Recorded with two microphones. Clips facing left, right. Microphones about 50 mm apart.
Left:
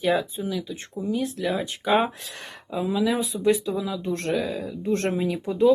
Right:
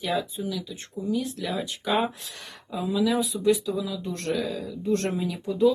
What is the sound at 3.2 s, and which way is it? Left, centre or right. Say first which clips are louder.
Speech: left 1 dB; left.